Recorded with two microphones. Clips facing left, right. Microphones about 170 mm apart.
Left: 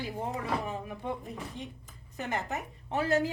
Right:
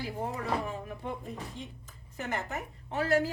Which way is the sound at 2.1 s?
20° left (ahead or behind).